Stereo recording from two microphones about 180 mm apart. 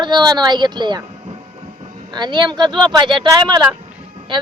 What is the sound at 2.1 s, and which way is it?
Speech, 25° right (ahead or behind).